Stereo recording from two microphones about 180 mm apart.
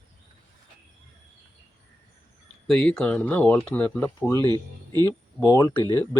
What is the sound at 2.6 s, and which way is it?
Speech, 5° left (ahead or behind).